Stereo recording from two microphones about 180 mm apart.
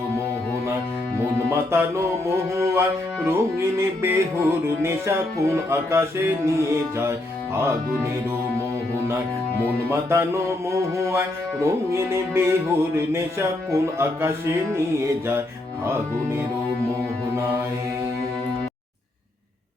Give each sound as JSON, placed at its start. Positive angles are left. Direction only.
{"t": 1.7, "sound": "music", "side_deg": -15}
{"t": 9.9, "sound": "music", "side_deg": -15}